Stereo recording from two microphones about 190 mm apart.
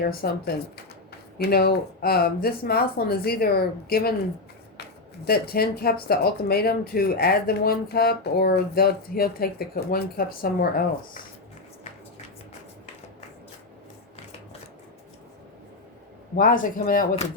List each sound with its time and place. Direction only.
0.0 s speech: 55° left (ahead or behind)
5.2 s speech: 55° left (ahead or behind)
16.4 s speech: 45° left (ahead or behind)